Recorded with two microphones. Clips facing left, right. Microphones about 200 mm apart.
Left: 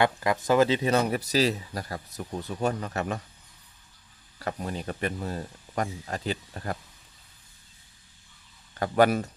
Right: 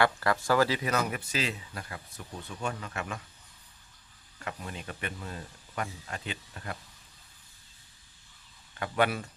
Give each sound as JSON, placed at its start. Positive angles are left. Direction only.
{"t": 0.0, "sound": "speech", "side_deg": 20}
{"t": 4.4, "sound": "speech", "side_deg": 35}
{"t": 8.7, "sound": "speech", "side_deg": 40}